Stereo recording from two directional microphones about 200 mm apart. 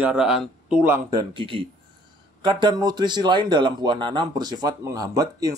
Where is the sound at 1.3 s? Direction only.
25° right (ahead or behind).